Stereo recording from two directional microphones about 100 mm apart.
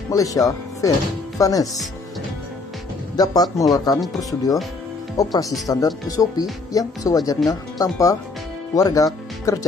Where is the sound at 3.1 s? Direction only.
40° left (ahead or behind).